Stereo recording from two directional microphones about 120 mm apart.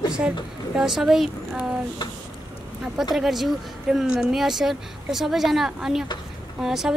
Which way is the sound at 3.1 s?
Centre (ahead or behind).